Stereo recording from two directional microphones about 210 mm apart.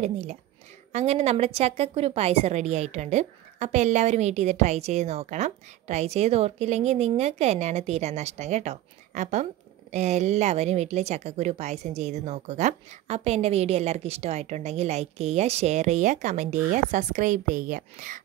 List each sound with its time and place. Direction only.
0.0 s a woman's voice: 30° right (ahead or behind)